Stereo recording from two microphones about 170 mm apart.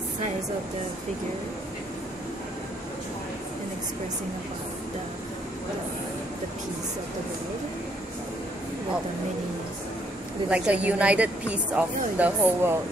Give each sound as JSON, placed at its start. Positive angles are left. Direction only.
{"t": 10.5, "sound": "a woman's voice", "side_deg": -10}